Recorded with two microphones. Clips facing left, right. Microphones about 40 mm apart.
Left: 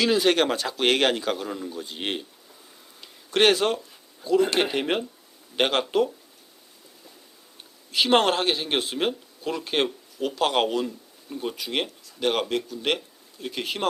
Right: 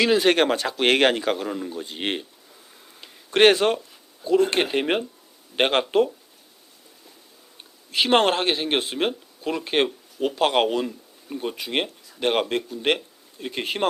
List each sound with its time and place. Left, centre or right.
0.0 s speech: right
3.2 s speech: right
7.9 s speech: right
10.8 s speech: centre
11.5 s speech: right